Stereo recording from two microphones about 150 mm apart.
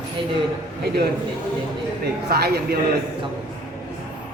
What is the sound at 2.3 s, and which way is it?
Speech, 90° right.